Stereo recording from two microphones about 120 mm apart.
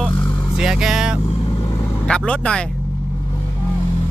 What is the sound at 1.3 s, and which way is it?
Speech, 45° left (ahead or behind).